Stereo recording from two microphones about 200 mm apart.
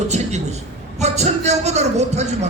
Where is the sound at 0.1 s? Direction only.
35° right (ahead or behind).